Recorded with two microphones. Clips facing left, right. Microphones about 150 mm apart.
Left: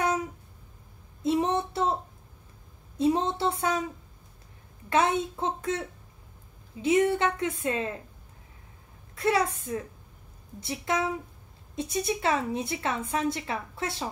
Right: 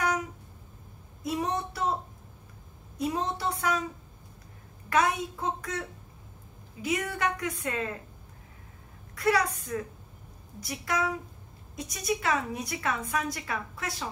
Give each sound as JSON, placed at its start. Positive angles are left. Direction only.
{"t": 1.2, "sound": "a sound", "side_deg": 25}
{"t": 3.0, "sound": "a woman's voice", "side_deg": 25}
{"t": 4.8, "sound": "a woman's voice", "side_deg": 25}
{"t": 9.1, "sound": "a woman's voice", "side_deg": 25}